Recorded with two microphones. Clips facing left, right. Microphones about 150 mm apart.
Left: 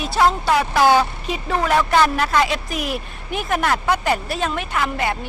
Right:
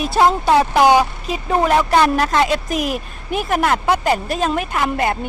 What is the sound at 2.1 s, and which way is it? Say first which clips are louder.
A woman's voice: right 3 dB; 35° right (ahead or behind).